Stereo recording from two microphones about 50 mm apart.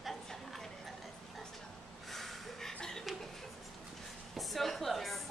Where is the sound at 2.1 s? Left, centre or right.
Centre.